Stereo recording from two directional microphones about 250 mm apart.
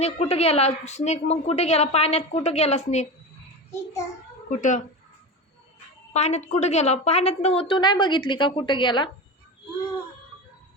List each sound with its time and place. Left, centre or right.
0.0 s a woman's voice: left
4.4 s speech: left
6.1 s a woman's voice: left